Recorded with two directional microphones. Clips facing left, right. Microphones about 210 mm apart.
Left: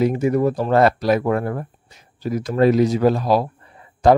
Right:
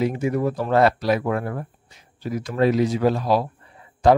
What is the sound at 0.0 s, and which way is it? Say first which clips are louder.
Speech: left 4 dB; 40° left (ahead or behind).